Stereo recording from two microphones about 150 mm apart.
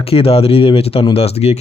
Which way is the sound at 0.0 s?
40° left (ahead or behind).